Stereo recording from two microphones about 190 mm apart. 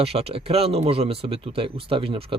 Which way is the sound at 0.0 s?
30° right (ahead or behind).